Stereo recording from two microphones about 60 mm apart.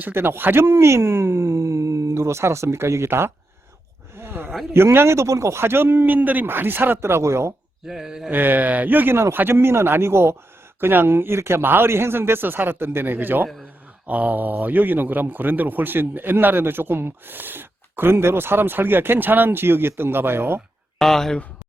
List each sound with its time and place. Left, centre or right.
0.0 s speech: right
4.2 s a sound: right
4.7 s a man's voice: right
7.9 s speech: centre
8.3 s a man's voice: right
21.0 s speech: centre